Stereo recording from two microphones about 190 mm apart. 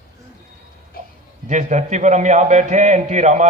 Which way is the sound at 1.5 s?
40° right (ahead or behind).